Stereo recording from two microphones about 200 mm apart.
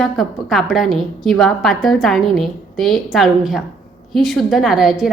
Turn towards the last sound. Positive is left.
turn(degrees=0)  # may be behind; listen again after turning